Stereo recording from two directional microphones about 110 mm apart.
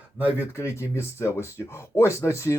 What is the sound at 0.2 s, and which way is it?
Speech, 15° right (ahead or behind).